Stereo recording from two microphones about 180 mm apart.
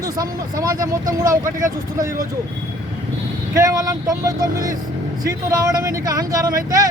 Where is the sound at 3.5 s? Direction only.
20° right (ahead or behind).